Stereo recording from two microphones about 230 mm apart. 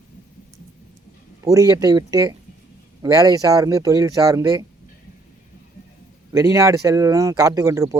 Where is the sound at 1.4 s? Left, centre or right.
Centre.